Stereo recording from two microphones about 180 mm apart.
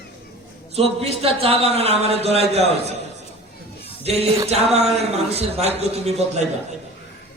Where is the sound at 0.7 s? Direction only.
35° right (ahead or behind).